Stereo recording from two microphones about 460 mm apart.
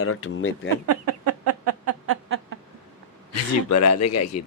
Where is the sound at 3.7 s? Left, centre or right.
Left.